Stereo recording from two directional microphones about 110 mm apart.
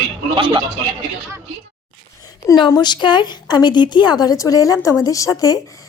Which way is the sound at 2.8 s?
45° left (ahead or behind).